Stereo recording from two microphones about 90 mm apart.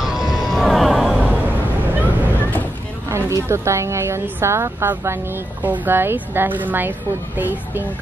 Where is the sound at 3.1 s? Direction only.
30° right (ahead or behind).